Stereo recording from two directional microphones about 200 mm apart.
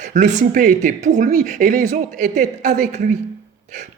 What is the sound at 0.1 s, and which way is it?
A man's voice, 40° right (ahead or behind).